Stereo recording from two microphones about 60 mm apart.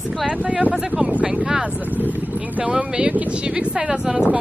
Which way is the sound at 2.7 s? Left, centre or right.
Centre.